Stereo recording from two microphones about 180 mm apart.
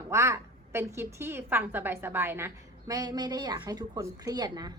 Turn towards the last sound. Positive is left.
turn(degrees=-20)  # may be behind; listen again after turning